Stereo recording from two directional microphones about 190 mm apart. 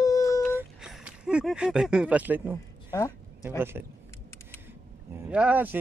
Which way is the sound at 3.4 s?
10° right (ahead or behind).